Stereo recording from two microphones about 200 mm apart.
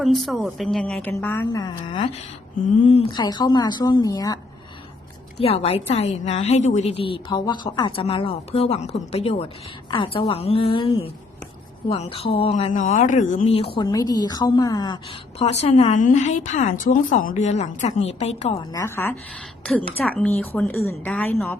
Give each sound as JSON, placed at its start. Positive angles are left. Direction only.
{"t": 0.0, "sound": "a woman's voice", "side_deg": 0}
{"t": 5.4, "sound": "speech", "side_deg": 30}
{"t": 7.0, "sound": "speech", "side_deg": 25}
{"t": 18.5, "sound": "a woman's voice", "side_deg": 15}